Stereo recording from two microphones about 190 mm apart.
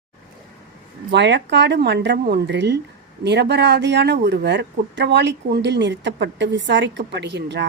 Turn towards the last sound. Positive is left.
turn(degrees=-65)  # may be behind; listen again after turning